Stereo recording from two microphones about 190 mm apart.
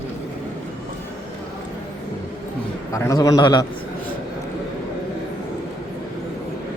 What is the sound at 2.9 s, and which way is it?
Speech, 15° left (ahead or behind).